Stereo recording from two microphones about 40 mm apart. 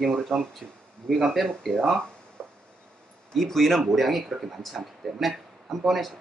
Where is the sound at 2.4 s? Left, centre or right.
Centre.